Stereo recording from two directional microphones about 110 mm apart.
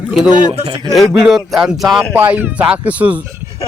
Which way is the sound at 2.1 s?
20° right (ahead or behind).